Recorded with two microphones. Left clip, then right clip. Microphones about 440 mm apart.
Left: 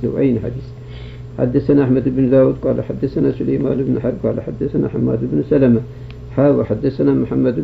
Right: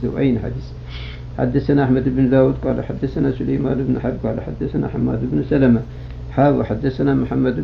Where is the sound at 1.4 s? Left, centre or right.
Centre.